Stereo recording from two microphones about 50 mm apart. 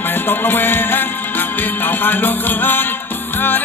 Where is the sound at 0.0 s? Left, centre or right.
Left.